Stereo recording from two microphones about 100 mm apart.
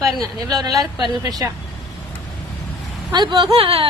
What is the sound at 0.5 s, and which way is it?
Speech, 40° right (ahead or behind).